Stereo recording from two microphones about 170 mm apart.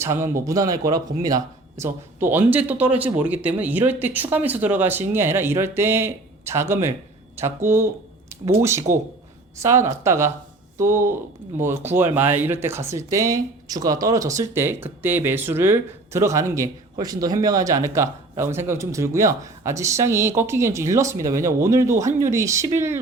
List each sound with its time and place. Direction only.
0.0 s speech: 15° right (ahead or behind)